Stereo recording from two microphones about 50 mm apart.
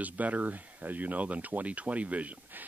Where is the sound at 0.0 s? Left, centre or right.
Right.